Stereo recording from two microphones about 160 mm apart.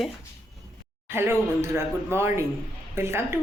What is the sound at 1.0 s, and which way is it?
Speech, 15° right (ahead or behind).